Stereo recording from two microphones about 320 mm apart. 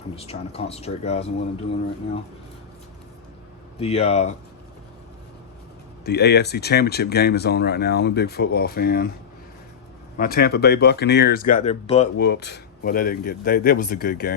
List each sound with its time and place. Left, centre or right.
0.2 s a man's voice: centre
3.8 s a man's voice: centre
6.1 s speech: left
10.2 s a man's voice: left
12.1 s a man's voice: left